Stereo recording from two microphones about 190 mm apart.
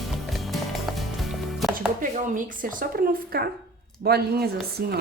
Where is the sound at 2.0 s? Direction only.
45° right (ahead or behind).